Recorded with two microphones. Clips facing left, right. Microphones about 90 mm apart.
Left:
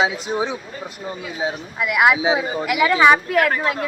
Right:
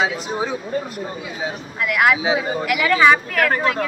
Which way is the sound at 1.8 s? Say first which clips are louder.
Left 1 dB; 10° left (ahead or behind).